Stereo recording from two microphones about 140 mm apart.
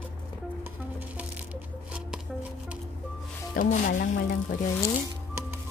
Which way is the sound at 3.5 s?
70° left (ahead or behind).